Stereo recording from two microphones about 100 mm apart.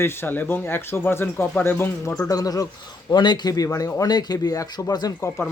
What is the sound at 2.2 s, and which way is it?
Speech, 35° left (ahead or behind).